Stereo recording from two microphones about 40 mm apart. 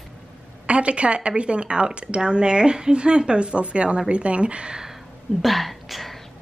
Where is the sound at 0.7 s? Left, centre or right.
Right.